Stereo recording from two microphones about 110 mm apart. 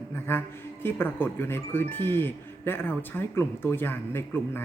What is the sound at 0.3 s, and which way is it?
Speech, 20° left (ahead or behind).